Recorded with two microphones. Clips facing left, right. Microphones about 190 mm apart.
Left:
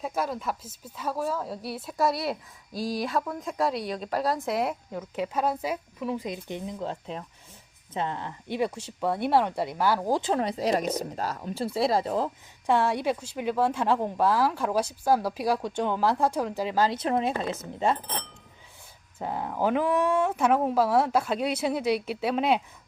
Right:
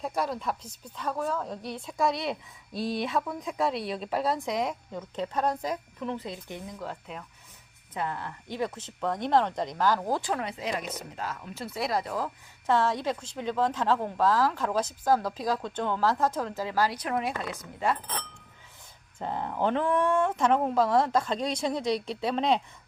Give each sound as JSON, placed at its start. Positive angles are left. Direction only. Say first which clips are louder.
{"t": 0.0, "sound": "a woman's voice", "louder": "left 1 dB", "side_deg": 0}
{"t": 10.4, "sound": "speech", "louder": "left 7 dB", "side_deg": 35}
{"t": 12.6, "sound": "a woman's voice", "louder": "left 2 dB", "side_deg": 15}
{"t": 19.2, "sound": "a woman's voice", "louder": "left 1 dB", "side_deg": 5}